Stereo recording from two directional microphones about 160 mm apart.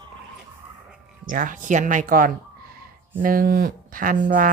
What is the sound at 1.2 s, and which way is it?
Speech, 55° right (ahead or behind).